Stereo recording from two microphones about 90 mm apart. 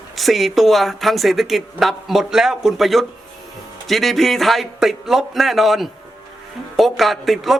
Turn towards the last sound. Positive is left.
turn(degrees=0)  # may be behind; listen again after turning